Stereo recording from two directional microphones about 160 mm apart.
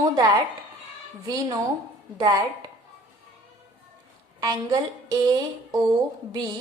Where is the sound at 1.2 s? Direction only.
25° right (ahead or behind).